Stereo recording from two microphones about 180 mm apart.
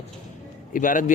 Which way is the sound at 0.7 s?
50° left (ahead or behind).